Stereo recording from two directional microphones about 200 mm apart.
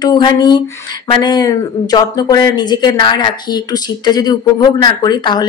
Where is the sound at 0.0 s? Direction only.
20° left (ahead or behind).